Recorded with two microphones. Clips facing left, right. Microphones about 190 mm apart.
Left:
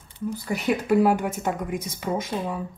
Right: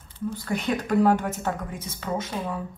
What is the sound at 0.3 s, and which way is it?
Speech, 10° left (ahead or behind).